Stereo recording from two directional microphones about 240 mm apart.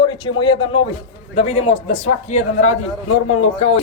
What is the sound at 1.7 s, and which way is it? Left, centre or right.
Speech, left.